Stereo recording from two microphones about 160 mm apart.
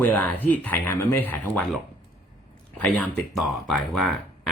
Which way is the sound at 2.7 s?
10° left (ahead or behind).